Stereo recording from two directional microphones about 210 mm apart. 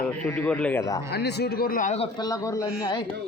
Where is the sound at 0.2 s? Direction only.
5° left (ahead or behind).